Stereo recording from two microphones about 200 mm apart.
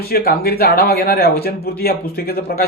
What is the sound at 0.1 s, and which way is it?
A man's voice, 50° left (ahead or behind).